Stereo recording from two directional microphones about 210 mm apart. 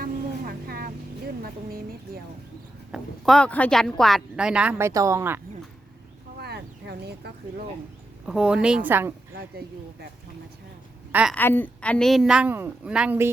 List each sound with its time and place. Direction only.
0.0 s vehicle: 45° right (ahead or behind)
2.9 s speech: centre (ahead or behind)
6.4 s a sound: 50° right (ahead or behind)
8.3 s speech: 5° right (ahead or behind)
9.4 s speech: 50° right (ahead or behind)
11.1 s a woman's voice: 5° right (ahead or behind)
11.3 s speech: 10° left (ahead or behind); by 13.3 s 10° right (ahead or behind)